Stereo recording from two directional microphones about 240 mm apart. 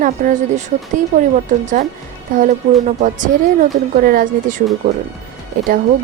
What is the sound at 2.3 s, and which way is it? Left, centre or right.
Speech, right.